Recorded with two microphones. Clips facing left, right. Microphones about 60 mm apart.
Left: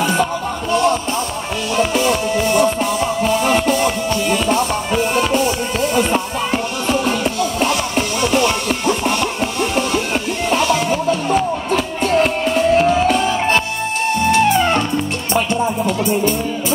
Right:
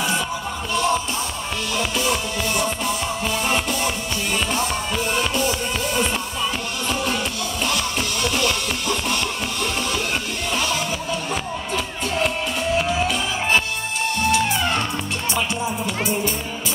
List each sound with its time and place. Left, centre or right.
0.0 s music: left
1.8 s music: left
8.2 s music: left
10.5 s music: left